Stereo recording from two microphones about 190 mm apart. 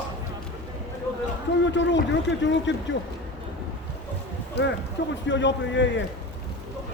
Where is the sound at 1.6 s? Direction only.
70° left (ahead or behind).